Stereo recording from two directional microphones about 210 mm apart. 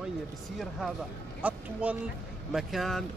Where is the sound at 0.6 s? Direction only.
Centre (ahead or behind).